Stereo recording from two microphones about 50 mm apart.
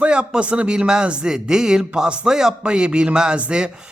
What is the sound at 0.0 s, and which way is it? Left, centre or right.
Speech, centre.